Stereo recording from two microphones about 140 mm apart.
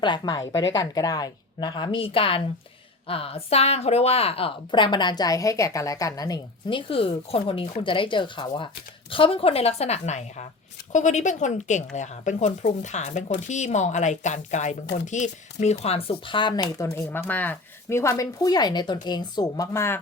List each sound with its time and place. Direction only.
0.0 s a woman's voice: 30° left (ahead or behind)
16.7 s speech: 20° left (ahead or behind)